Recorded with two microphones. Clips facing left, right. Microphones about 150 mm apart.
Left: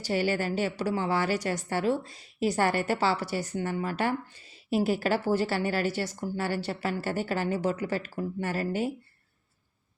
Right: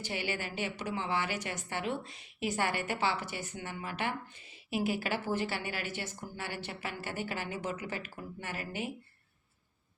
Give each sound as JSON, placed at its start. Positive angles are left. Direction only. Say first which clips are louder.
{"t": 0.0, "sound": "a woman's voice", "louder": "left 9 dB", "side_deg": 40}